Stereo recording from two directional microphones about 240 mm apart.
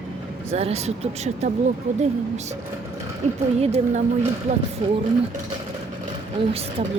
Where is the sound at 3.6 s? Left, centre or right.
Right.